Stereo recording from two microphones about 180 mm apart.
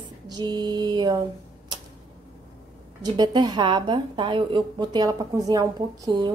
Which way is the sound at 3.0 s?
25° right (ahead or behind).